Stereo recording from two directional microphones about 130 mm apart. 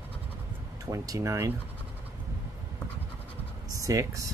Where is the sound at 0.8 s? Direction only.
25° right (ahead or behind).